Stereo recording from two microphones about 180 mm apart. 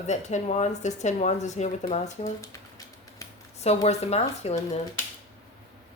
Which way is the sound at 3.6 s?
35° left (ahead or behind).